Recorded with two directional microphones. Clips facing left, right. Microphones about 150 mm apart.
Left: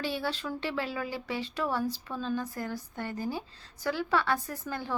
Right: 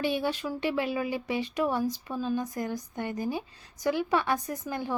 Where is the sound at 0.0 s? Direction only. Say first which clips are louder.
Right 4 dB; 15° right (ahead or behind).